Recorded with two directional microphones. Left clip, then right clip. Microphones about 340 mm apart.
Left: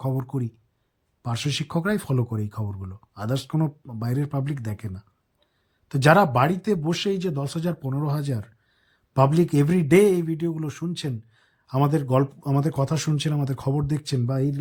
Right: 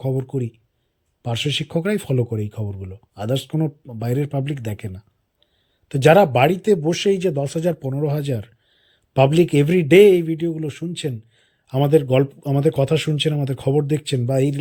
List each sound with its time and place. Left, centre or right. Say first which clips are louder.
0.0 s speech: right 5 dB; centre
6.1 s speech: right 5 dB; centre